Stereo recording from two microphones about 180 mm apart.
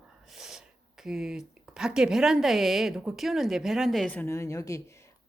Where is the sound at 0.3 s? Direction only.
5° right (ahead or behind).